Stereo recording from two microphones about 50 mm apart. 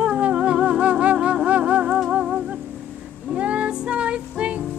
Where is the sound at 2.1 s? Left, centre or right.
Centre.